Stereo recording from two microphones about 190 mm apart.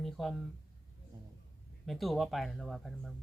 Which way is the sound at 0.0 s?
Centre (ahead or behind).